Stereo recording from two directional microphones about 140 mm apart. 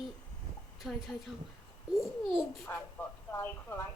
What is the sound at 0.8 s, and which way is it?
Speech, centre (ahead or behind).